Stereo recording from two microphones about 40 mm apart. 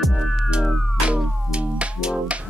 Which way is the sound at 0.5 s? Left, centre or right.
Right.